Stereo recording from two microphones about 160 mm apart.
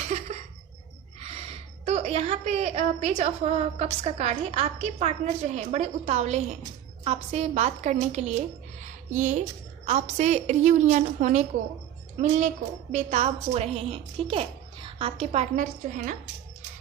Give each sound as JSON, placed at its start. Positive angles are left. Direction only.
{"t": 0.1, "sound": "a sound", "side_deg": -40}
{"t": 1.2, "sound": "a woman's voice", "side_deg": -40}
{"t": 8.8, "sound": "music", "side_deg": -50}
{"t": 9.8, "sound": "a woman's voice", "side_deg": -45}
{"t": 12.9, "sound": "a woman's voice", "side_deg": -45}